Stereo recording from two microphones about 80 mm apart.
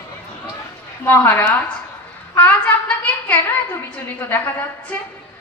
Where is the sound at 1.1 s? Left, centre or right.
Left.